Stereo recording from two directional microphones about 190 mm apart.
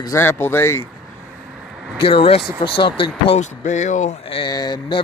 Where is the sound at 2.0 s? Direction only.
30° left (ahead or behind).